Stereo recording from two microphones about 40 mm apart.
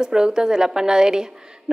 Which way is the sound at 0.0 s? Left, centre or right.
Centre.